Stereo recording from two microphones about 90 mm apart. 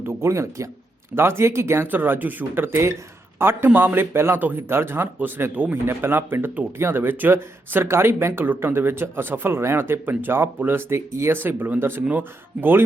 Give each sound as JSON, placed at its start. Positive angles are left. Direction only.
{"t": 0.0, "sound": "speech", "side_deg": -30}